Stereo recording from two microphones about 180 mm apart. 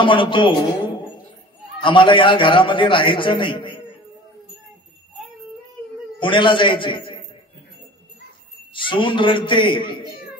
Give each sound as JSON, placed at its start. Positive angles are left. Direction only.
{"t": 0.0, "sound": "a man's voice", "side_deg": 30}
{"t": 6.1, "sound": "a man's voice", "side_deg": 25}
{"t": 8.8, "sound": "a man's voice", "side_deg": 25}